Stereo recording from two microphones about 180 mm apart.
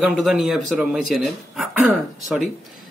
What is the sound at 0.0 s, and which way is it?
A man's voice, centre (ahead or behind).